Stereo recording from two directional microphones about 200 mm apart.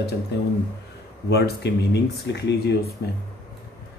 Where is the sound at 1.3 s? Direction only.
55° left (ahead or behind).